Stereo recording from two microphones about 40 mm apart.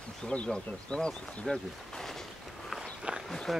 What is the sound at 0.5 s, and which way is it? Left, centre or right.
Speech, left.